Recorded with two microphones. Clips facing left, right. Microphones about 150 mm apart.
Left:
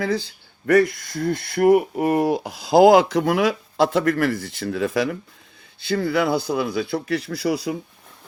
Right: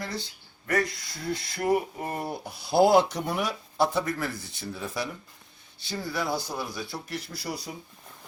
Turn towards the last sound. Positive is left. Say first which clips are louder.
# left 12 dB
turn(degrees=90)